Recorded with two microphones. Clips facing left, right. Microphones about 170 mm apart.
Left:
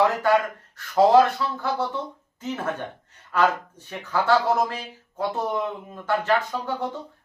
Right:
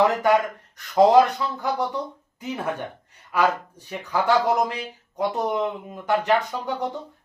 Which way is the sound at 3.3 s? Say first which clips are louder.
Even; 15° right (ahead or behind).